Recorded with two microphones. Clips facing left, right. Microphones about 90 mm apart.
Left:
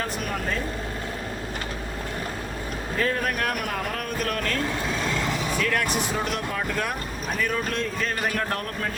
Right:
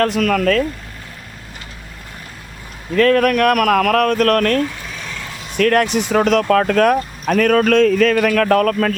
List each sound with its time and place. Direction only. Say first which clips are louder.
0.0 s speech: right 13 dB; 90° right
2.9 s speech: right 13 dB; 75° right (ahead or behind)
6.0 s speech: right 12 dB; 80° right